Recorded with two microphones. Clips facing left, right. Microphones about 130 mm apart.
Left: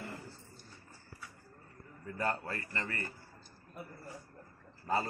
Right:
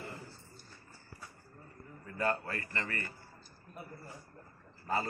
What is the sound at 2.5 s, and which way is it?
Speech, 25° left (ahead or behind).